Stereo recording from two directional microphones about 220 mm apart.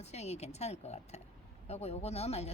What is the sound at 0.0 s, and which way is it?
Speech, 30° left (ahead or behind).